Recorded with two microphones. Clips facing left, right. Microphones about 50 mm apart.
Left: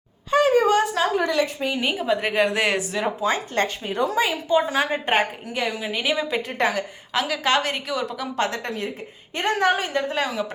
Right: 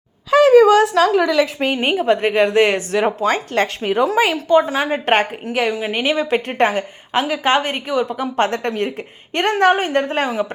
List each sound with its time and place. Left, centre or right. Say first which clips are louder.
0.3 s a woman's voice: right 8 dB; right
2.2 s a woman's voice: right 6 dB; right
2.9 s speech: right 6 dB; right
3.8 s speech: right 9 dB; right
4.5 s a woman's voice: right 5 dB; right
8.4 s speech: right 7 dB; right